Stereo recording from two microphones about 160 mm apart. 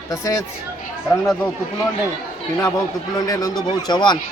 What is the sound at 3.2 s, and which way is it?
Speech, 20° left (ahead or behind).